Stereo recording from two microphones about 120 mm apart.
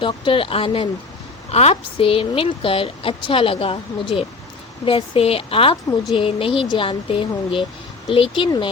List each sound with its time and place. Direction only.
0.0 s a woman's voice: 45° left (ahead or behind)
1.5 s a woman's voice: 60° left (ahead or behind); by 8.7 s 45° left (ahead or behind)